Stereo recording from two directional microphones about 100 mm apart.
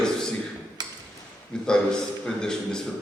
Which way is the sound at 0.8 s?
45° right (ahead or behind).